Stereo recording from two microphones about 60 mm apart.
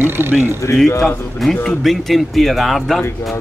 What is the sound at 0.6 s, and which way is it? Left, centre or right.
Speech, left.